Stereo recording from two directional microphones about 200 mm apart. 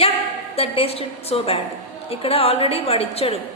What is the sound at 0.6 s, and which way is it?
A woman's voice, 30° left (ahead or behind).